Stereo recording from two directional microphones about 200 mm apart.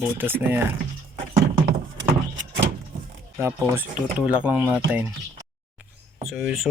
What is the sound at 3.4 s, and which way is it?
Speech, 10° right (ahead or behind).